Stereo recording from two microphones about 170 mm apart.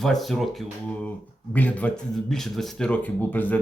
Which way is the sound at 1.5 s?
10° left (ahead or behind).